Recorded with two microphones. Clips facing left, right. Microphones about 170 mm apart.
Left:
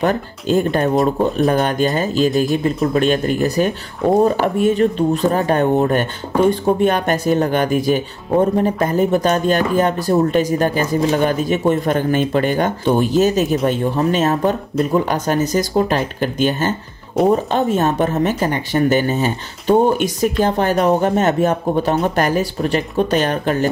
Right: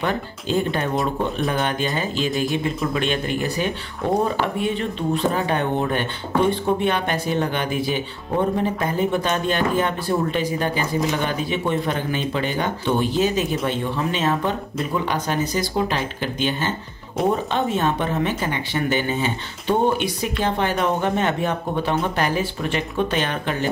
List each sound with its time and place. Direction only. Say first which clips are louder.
0.0 s speech: left 6 dB; 45° left (ahead or behind)